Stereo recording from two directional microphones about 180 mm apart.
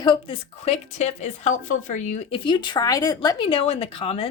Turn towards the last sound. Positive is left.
turn(degrees=30)  # may be behind; listen again after turning